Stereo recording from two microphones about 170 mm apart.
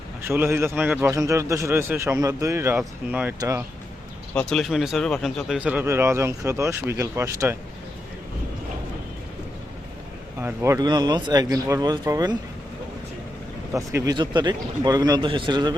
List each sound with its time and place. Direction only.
0.2 s speech: 15° right (ahead or behind)
4.4 s speech: 5° left (ahead or behind); by 7.5 s 15° right (ahead or behind)
10.4 s speech: 15° right (ahead or behind)
13.7 s speech: 20° right (ahead or behind)